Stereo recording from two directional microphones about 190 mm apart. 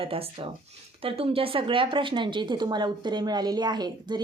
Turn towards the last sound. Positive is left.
turn(degrees=-20)  # may be behind; listen again after turning